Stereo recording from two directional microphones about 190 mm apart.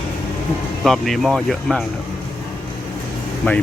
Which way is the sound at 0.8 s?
Centre (ahead or behind).